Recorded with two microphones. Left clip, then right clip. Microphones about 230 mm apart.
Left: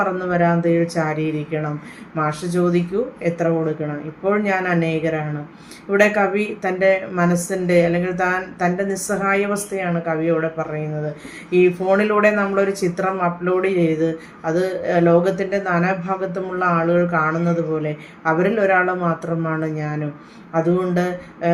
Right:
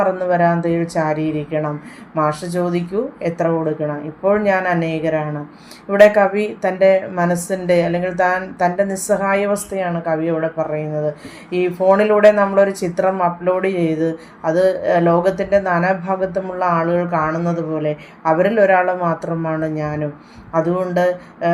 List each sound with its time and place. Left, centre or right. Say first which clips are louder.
0.0 s speech: right 4 dB; centre